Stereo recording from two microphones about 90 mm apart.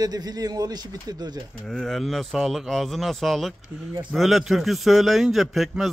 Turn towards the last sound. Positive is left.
turn(degrees=0)  # may be behind; listen again after turning